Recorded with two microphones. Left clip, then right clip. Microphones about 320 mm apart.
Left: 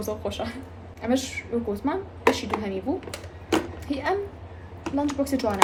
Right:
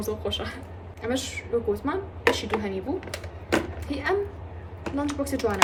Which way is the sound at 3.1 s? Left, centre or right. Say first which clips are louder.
Right 2 dB; centre.